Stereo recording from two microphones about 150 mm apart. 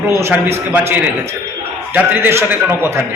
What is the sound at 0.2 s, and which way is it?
A man's voice, 15° right (ahead or behind).